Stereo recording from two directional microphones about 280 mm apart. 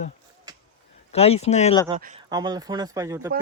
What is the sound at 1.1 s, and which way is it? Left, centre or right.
Speech, left.